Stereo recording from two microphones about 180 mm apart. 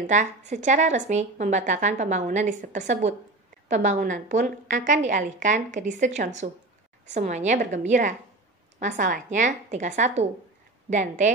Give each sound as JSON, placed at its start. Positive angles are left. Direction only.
{"t": 0.0, "sound": "a woman's voice", "side_deg": -45}